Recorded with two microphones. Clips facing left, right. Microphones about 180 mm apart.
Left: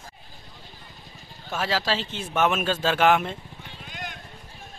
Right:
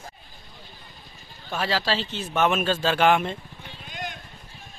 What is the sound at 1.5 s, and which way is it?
A man's voice, 5° left (ahead or behind).